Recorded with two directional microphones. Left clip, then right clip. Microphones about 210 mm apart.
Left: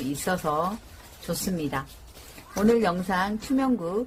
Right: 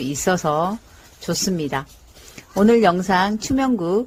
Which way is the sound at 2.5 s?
35° right (ahead or behind).